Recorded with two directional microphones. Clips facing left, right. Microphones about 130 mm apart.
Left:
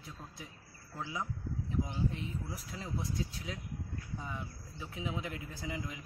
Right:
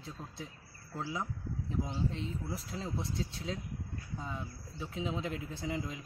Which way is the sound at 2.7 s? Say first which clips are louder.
Even; 25° right (ahead or behind).